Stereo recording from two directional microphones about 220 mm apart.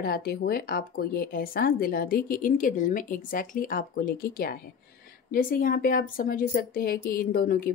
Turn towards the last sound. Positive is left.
turn(degrees=40)  # may be behind; listen again after turning